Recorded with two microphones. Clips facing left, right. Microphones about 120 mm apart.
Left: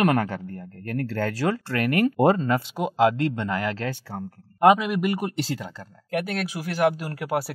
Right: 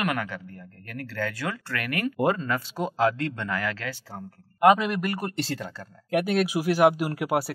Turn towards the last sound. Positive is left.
turn(degrees=-10)  # may be behind; listen again after turning